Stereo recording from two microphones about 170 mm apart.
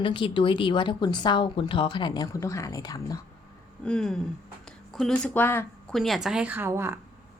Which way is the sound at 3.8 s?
5° left (ahead or behind).